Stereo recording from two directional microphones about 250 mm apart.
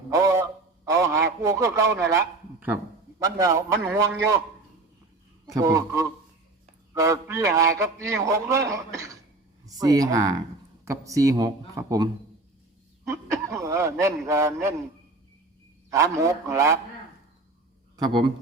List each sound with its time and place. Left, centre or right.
0.2 s a sound: centre
0.9 s a man's voice: centre
5.5 s a man's voice: centre
13.1 s a sound: centre
14.3 s a man's voice: centre
15.9 s a man's voice: centre
17.9 s speech: centre